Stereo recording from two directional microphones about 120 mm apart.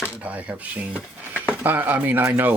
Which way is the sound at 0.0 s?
10° right (ahead or behind).